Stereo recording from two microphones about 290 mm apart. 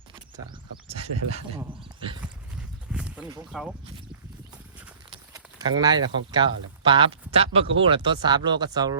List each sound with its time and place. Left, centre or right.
1.5 s speech: centre
2.2 s livestock: centre
3.5 s speech: centre
5.1 s speech: centre